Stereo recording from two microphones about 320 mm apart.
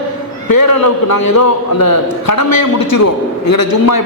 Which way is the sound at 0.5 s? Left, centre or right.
Left.